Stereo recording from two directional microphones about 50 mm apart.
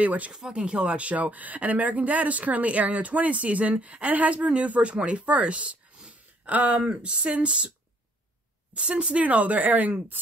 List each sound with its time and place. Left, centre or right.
0.0 s a woman's voice: right
0.3 s speech: centre
8.7 s a woman's voice: right